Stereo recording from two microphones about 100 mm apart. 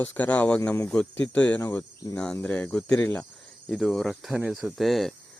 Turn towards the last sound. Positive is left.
turn(degrees=0)  # may be behind; listen again after turning